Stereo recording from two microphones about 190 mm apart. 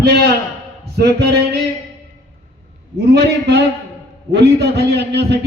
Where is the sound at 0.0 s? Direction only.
55° right (ahead or behind).